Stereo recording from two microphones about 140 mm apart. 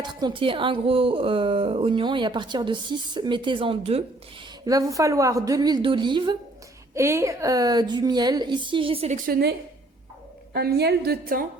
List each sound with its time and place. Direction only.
0.0 s speech: 35° right (ahead or behind)
4.6 s a woman's voice: 25° right (ahead or behind)
6.9 s a woman's voice: 20° right (ahead or behind); by 9.0 s 40° right (ahead or behind)
9.0 s a woman's voice: 80° right
11.3 s speech: 90° right